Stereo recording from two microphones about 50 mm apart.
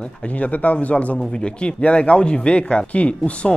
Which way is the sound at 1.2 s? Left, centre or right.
Centre.